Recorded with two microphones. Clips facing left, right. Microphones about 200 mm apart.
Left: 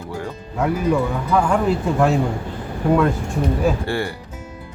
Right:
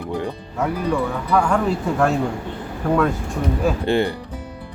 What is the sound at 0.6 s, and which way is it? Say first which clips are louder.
Speech: left 2 dB; 5° left (ahead or behind).